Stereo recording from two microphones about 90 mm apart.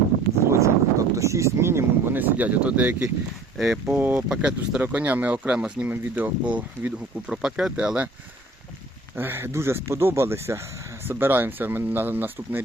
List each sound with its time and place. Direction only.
0.5 s speech: 35° right (ahead or behind); by 3.1 s 15° right (ahead or behind)
3.6 s speech: 5° right (ahead or behind)
3.9 s speech: 20° right (ahead or behind)
9.1 s speech: 25° right (ahead or behind)